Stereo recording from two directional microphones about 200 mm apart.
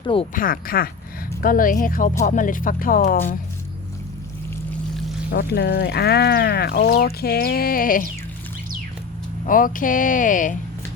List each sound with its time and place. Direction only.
0.0 s speech: 25° left (ahead or behind)
0.3 s speech: 45° left (ahead or behind)
5.3 s speech: 55° left (ahead or behind)
9.5 s speech: 45° left (ahead or behind)